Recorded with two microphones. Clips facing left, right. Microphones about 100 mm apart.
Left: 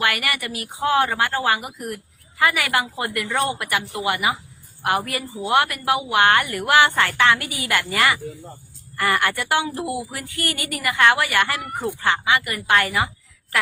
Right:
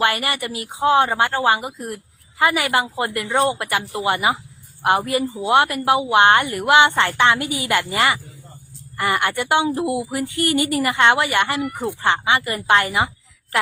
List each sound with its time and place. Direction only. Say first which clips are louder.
0.0 s a woman's voice: right 3 dB; 25° right (ahead or behind)